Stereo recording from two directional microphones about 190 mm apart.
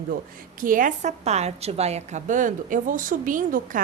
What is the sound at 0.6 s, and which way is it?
A woman's voice, 45° right (ahead or behind).